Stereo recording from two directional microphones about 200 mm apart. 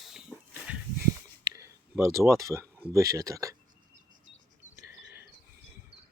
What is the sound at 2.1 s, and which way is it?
Speech, 15° right (ahead or behind).